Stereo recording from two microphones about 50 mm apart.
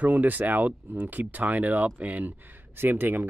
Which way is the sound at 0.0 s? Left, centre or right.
Right.